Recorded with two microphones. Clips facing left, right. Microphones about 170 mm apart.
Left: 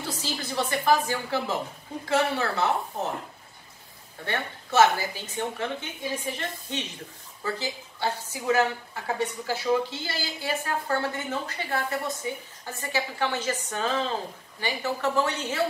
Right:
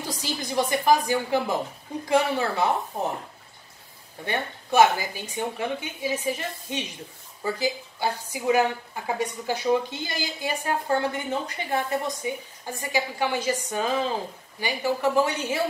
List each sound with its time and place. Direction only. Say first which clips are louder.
0.0 s a woman's voice: right 1 dB; 15° right (ahead or behind)
4.2 s a woman's voice: right 2 dB; 15° right (ahead or behind)